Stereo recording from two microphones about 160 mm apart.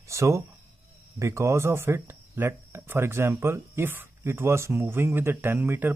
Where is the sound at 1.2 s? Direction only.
20° right (ahead or behind).